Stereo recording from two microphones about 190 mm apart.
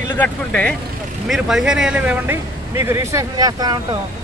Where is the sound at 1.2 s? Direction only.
5° right (ahead or behind).